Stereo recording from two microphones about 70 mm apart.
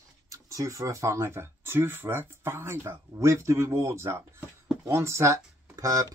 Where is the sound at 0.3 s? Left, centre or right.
Right.